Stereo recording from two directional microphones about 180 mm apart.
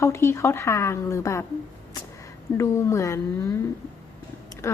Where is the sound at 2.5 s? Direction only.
15° left (ahead or behind).